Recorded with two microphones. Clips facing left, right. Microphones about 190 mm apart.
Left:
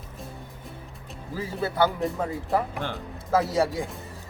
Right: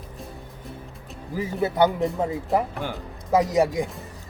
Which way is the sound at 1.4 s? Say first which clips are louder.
Right 4 dB; 20° right (ahead or behind).